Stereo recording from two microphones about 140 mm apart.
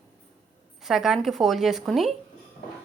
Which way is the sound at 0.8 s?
Centre (ahead or behind).